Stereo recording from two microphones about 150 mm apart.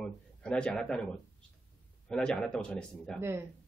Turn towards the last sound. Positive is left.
turn(degrees=-15)  # may be behind; listen again after turning